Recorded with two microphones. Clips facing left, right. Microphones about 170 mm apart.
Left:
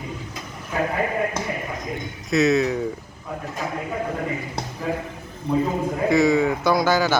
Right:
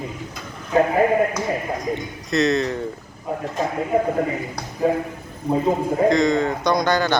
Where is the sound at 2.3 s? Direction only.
Centre (ahead or behind).